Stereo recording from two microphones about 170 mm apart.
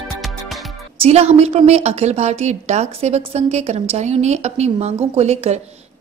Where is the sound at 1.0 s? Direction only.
35° right (ahead or behind).